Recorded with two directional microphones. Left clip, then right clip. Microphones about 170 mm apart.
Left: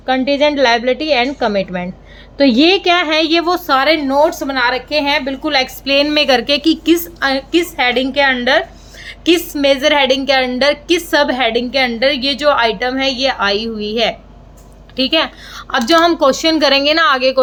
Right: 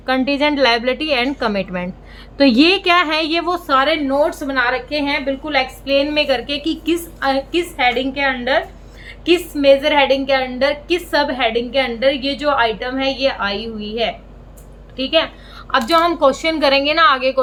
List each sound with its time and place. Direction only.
0.0 s a woman's voice: 15° left (ahead or behind); by 15.6 s 55° left (ahead or behind)
15.7 s a woman's voice: 35° left (ahead or behind)